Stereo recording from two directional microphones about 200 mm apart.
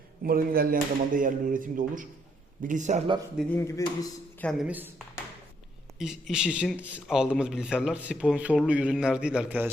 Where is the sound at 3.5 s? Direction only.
15° left (ahead or behind).